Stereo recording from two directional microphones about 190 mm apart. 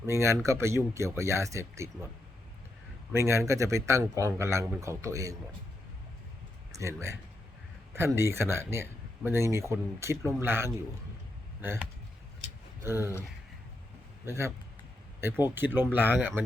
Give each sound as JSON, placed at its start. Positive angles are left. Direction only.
{"t": 0.0, "sound": "speech", "side_deg": -15}
{"t": 3.1, "sound": "speech", "side_deg": -15}
{"t": 6.7, "sound": "speech", "side_deg": -15}
{"t": 12.8, "sound": "speech", "side_deg": -10}
{"t": 14.3, "sound": "speech", "side_deg": -15}